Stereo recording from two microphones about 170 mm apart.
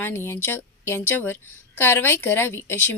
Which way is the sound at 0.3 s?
15° left (ahead or behind).